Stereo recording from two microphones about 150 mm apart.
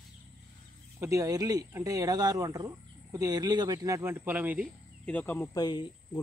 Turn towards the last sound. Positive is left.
turn(degrees=30)  # may be behind; listen again after turning